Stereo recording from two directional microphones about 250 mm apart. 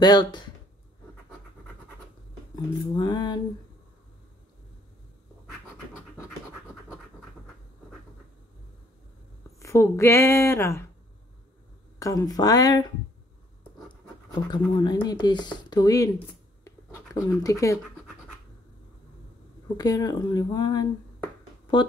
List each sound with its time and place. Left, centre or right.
0.0 s speech: centre
2.5 s speech: centre
9.6 s speech: centre
12.0 s speech: centre
14.5 s speech: centre
16.6 s writing: centre
19.8 s speech: centre